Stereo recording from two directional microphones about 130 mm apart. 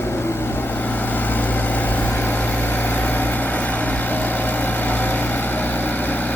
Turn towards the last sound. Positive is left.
turn(degrees=15)  # may be behind; listen again after turning